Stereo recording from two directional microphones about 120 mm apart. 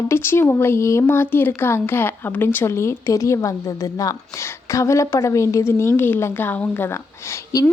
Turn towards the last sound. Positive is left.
turn(degrees=25)  # may be behind; listen again after turning